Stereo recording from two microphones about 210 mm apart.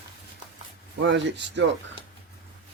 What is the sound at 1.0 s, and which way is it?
Speech, 55° right (ahead or behind).